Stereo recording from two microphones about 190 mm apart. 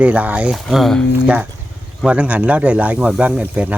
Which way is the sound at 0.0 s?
5° right (ahead or behind).